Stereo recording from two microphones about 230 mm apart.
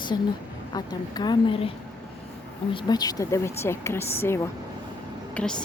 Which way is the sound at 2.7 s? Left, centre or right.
Centre.